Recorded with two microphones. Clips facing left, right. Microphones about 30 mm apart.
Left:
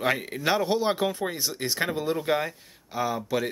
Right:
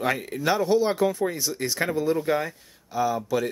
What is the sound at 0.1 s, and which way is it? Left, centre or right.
Speech, left.